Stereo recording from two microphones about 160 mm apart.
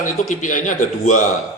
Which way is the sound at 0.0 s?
55° left (ahead or behind).